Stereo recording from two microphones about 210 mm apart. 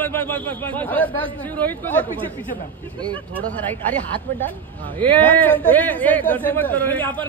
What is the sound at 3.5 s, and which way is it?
A man's voice, 10° left (ahead or behind).